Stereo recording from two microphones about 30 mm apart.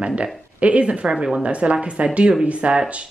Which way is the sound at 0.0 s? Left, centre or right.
Right.